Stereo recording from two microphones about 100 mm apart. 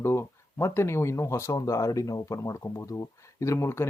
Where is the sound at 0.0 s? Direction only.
25° left (ahead or behind).